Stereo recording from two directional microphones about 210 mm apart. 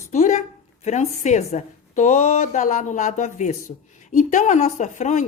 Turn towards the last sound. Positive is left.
turn(degrees=35)  # may be behind; listen again after turning